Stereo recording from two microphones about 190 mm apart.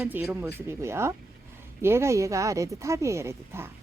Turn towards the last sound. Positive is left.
turn(degrees=-15)  # may be behind; listen again after turning